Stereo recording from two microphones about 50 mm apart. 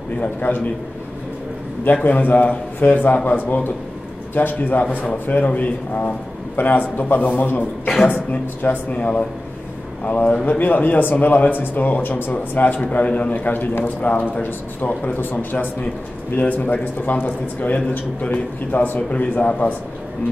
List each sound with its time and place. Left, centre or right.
0.5 s speech: left
2.0 s a man's voice: left
8.3 s speech: left